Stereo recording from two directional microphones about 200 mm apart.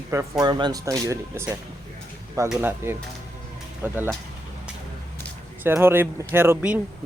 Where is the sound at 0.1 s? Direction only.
15° right (ahead or behind).